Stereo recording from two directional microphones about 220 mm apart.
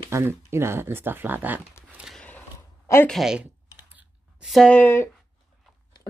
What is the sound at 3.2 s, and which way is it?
Clicking, 5° right (ahead or behind).